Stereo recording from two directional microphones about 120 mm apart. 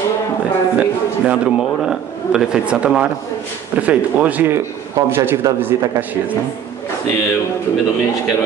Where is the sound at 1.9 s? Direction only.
5° right (ahead or behind).